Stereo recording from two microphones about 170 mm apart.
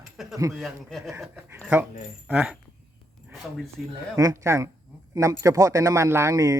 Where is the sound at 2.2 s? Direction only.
5° right (ahead or behind).